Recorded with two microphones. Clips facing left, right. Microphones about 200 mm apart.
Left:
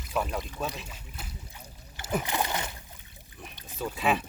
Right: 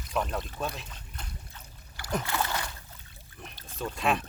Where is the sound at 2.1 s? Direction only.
15° left (ahead or behind).